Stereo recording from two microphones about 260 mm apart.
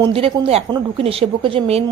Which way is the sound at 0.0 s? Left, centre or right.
Centre.